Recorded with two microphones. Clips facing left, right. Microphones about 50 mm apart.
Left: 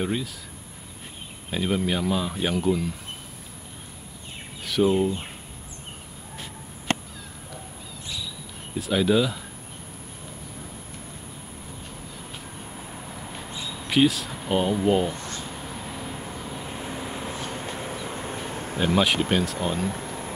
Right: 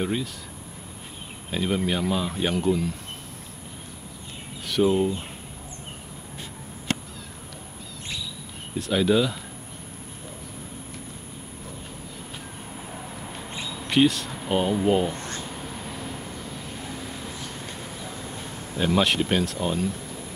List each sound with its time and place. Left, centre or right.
0.0 s speech: centre
1.5 s speech: centre
4.6 s speech: centre
8.7 s speech: centre
12.7 s vehicle: centre
13.7 s speech: centre
15.1 s a sound: right
15.4 s vehicle: centre; by 18.8 s left
18.9 s speech: centre
19.9 s a sound: left